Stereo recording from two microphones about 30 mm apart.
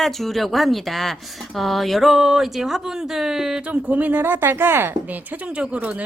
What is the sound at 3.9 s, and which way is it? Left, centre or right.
Speech, right.